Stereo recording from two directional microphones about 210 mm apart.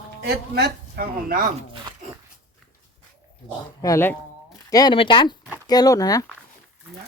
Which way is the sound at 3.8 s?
10° left (ahead or behind).